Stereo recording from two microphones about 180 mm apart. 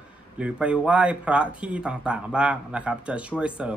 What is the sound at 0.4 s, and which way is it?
Speech, 5° right (ahead or behind).